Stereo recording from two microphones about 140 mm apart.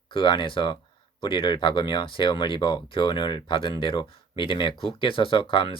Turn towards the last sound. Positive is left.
turn(degrees=35)  # may be behind; listen again after turning